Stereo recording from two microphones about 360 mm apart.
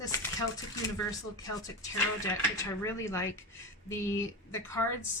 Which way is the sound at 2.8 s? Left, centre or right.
Centre.